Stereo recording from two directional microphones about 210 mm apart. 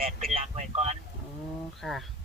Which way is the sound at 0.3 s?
35° right (ahead or behind).